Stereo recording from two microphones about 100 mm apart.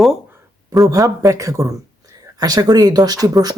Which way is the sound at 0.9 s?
35° right (ahead or behind).